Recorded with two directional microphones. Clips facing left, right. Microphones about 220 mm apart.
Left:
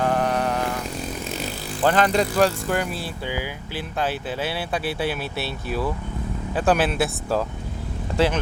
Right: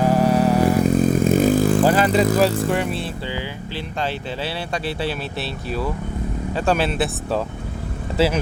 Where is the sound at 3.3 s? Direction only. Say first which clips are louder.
Right 1 dB; 10° left (ahead or behind).